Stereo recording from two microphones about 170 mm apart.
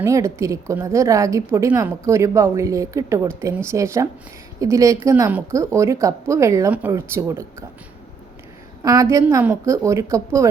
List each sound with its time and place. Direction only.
0.0 s a woman's voice: 15° right (ahead or behind)
8.8 s a woman's voice: 20° right (ahead or behind)